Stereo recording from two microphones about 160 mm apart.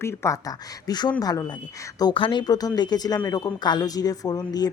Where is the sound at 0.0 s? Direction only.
15° left (ahead or behind).